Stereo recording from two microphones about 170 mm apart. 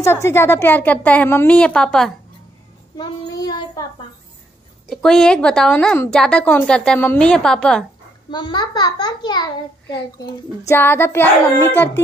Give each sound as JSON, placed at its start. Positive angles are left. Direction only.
{"t": 0.0, "sound": "speech", "side_deg": 15}
{"t": 3.0, "sound": "child singing", "side_deg": 25}
{"t": 4.9, "sound": "a woman's voice", "side_deg": 5}
{"t": 8.3, "sound": "a child's voice", "side_deg": 25}